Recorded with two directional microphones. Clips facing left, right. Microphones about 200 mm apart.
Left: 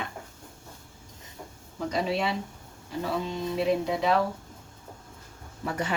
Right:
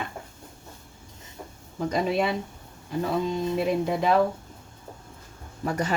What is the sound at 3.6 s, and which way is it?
Speech, 50° right (ahead or behind).